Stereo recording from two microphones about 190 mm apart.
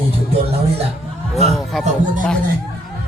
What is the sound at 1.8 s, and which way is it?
Speech, 40° right (ahead or behind).